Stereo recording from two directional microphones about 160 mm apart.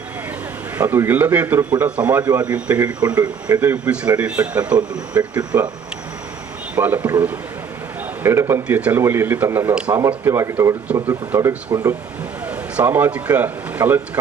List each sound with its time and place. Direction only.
0.8 s a man's voice: 10° right (ahead or behind)
6.7 s a man's voice: 10° right (ahead or behind)